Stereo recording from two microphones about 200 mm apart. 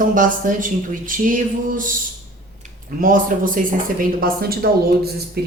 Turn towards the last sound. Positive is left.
turn(degrees=-55)  # may be behind; listen again after turning